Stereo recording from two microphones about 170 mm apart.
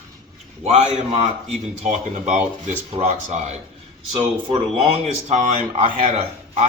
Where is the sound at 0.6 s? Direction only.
40° right (ahead or behind).